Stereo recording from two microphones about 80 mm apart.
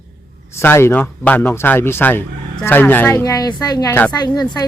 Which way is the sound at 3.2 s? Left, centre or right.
Left.